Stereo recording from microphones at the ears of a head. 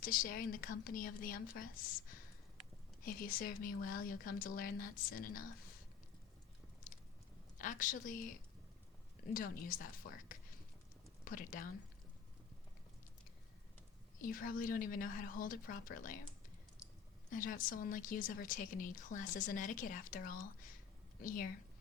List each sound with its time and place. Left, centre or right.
0.0 s speech: left
7.6 s speech: left
14.2 s speech: left
17.2 s speech: left